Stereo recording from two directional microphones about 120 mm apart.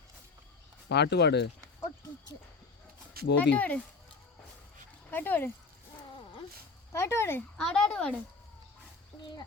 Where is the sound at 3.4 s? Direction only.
10° left (ahead or behind).